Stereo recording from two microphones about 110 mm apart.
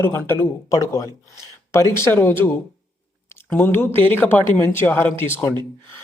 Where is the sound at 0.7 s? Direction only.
30° left (ahead or behind).